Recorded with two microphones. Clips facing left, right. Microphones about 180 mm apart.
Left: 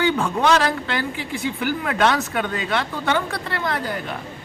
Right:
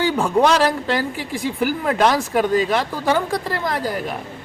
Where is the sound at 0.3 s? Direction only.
35° right (ahead or behind).